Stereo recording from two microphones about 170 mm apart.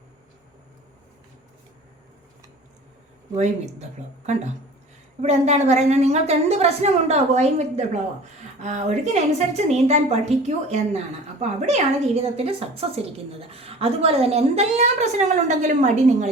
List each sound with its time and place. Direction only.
3.3 s speech: 40° right (ahead or behind)
5.2 s a woman's voice: 40° right (ahead or behind)